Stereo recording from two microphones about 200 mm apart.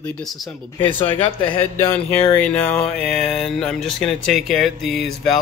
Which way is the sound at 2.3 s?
5° left (ahead or behind).